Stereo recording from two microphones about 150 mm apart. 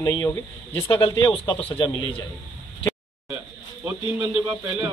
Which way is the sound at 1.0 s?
30° left (ahead or behind).